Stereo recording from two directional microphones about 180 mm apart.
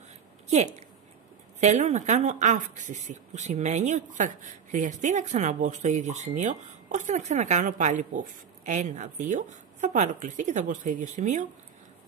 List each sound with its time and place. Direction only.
1.6 s speech: 40° right (ahead or behind)